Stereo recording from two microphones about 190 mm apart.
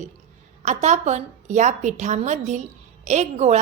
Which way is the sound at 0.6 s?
40° right (ahead or behind).